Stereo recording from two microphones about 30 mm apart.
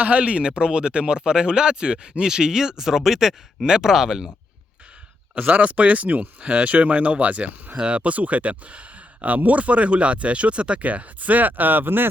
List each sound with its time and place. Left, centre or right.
0.0 s speech: right
3.9 s speech: centre
5.3 s speech: right
10.8 s speech: right